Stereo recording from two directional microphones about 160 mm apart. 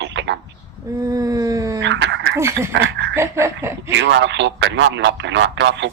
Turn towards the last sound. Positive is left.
turn(degrees=-90)